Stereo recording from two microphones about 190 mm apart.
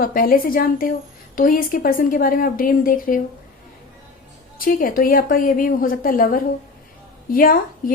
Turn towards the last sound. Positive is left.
turn(degrees=50)  # may be behind; listen again after turning